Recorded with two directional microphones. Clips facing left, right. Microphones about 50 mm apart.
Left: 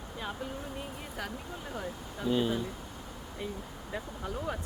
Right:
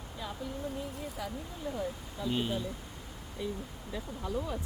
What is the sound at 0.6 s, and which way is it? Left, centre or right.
Vehicle, left.